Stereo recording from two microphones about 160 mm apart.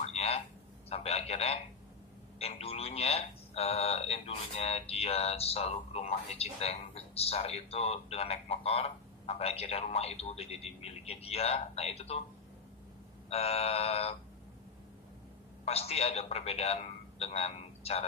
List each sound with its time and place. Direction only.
0.0 s a sound: 40° left (ahead or behind)
0.8 s a man's voice: 40° left (ahead or behind)
13.3 s speech: 40° left (ahead or behind)
15.6 s a man's voice: 40° left (ahead or behind)